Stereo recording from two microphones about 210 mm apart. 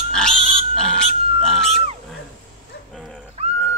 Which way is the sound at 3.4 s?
30° right (ahead or behind).